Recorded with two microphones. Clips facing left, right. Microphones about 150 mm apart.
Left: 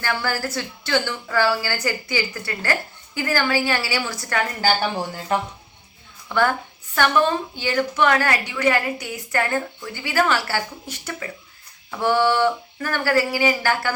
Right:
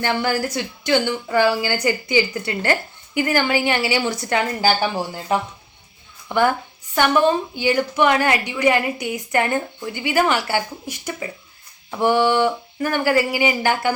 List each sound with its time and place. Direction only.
0.0 s a woman's voice: 20° right (ahead or behind)
6.2 s a woman's voice: 15° right (ahead or behind)